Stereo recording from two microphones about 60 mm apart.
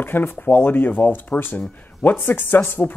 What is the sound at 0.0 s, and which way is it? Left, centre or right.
A man's voice, left.